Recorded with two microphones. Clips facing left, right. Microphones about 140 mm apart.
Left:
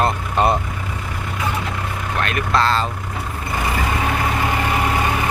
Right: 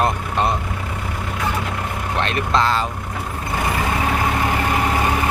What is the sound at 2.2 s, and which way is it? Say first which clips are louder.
Speech: even; 30° right (ahead or behind).